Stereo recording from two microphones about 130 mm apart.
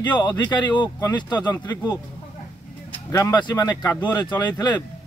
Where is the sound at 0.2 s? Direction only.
30° left (ahead or behind).